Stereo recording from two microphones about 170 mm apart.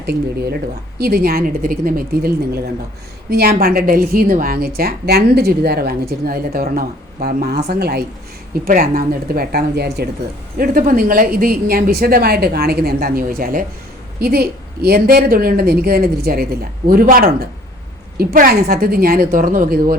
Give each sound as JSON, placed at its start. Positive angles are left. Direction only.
{"t": 0.0, "sound": "a woman's voice", "side_deg": -75}
{"t": 8.6, "sound": "a woman's voice", "side_deg": -60}
{"t": 10.6, "sound": "a woman's voice", "side_deg": -55}